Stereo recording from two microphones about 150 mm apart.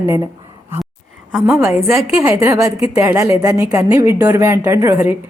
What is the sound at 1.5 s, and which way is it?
A woman's voice, 15° right (ahead or behind).